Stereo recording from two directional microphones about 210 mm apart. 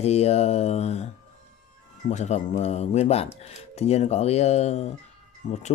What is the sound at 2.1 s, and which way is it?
Speech, 35° left (ahead or behind).